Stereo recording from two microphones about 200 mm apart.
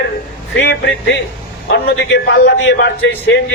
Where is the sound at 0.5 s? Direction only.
65° left (ahead or behind).